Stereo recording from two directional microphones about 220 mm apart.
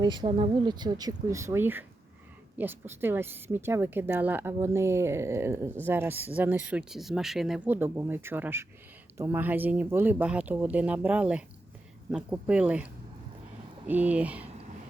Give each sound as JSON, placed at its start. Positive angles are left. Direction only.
{"t": 0.0, "sound": "speech", "side_deg": -20}